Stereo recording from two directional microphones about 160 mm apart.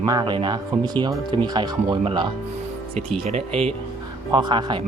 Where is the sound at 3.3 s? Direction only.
40° right (ahead or behind).